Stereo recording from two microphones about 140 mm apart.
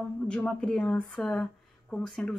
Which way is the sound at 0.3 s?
5° left (ahead or behind).